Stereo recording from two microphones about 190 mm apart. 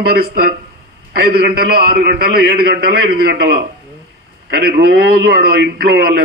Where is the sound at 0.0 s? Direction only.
55° right (ahead or behind).